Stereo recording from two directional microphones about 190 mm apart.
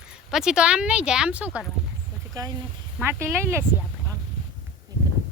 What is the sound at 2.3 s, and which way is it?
Speech, 20° right (ahead or behind).